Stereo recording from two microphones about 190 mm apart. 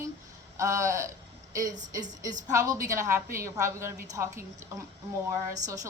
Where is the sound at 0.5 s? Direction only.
15° right (ahead or behind).